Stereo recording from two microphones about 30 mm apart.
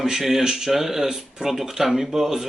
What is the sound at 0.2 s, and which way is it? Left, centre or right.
A man's voice, centre.